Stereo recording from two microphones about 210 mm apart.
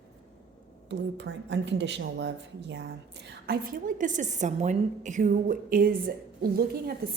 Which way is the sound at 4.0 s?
35° right (ahead or behind).